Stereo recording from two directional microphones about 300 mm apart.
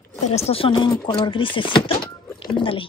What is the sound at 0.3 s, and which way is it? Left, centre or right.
A woman's voice, centre.